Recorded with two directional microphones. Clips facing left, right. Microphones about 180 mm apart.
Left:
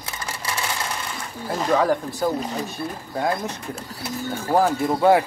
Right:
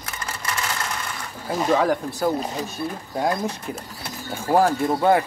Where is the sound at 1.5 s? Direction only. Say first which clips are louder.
Even; 5° right (ahead or behind).